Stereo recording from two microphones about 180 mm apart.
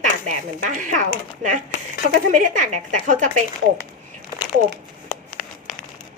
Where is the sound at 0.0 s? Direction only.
45° right (ahead or behind).